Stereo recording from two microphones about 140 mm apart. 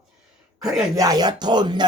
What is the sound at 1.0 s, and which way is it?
Speech, 30° right (ahead or behind).